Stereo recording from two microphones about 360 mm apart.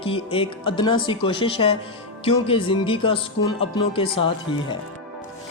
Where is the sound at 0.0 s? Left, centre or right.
Centre.